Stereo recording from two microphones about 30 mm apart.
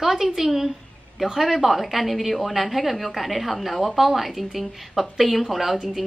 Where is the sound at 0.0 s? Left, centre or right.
Centre.